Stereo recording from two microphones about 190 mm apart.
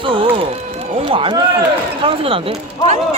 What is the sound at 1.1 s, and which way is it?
Speech, 30° right (ahead or behind).